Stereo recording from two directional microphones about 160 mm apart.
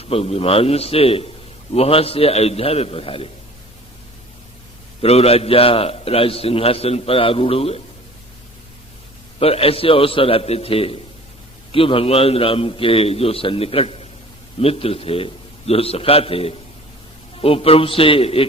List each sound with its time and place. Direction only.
0.0 s a man's voice: 40° left (ahead or behind)
5.0 s a man's voice: 40° left (ahead or behind)
9.4 s a man's voice: 35° left (ahead or behind)